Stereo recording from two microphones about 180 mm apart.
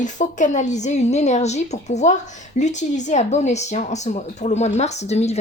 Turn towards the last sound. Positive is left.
turn(degrees=35)  # may be behind; listen again after turning